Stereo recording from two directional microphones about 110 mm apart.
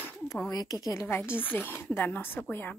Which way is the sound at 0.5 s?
35° left (ahead or behind).